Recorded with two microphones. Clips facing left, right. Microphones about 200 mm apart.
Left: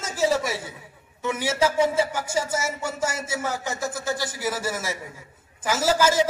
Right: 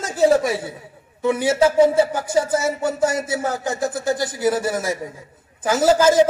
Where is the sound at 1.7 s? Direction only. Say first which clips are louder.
Right 7 dB; 35° right (ahead or behind).